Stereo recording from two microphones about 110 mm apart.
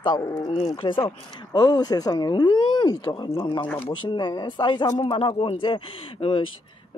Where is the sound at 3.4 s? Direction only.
50° left (ahead or behind).